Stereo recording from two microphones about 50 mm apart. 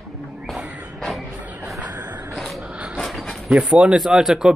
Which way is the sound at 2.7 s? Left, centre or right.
Right.